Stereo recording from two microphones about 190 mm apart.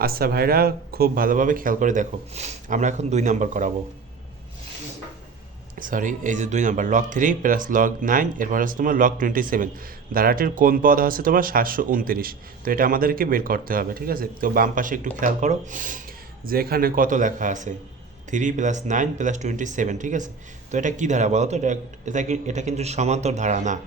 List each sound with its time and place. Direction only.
0.0 s speech: 50° right (ahead or behind)
5.8 s speech: 45° right (ahead or behind)